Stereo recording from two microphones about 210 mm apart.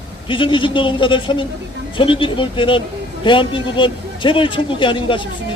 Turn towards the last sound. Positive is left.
turn(degrees=25)  # may be behind; listen again after turning